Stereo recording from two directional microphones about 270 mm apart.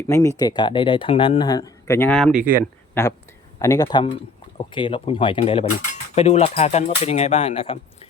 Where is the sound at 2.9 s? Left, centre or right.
Centre.